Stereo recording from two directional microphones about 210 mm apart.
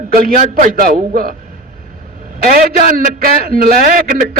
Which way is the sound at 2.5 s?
45° right (ahead or behind).